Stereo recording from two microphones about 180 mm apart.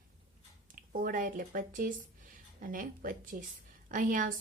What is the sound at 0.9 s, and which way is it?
Speech, 50° right (ahead or behind).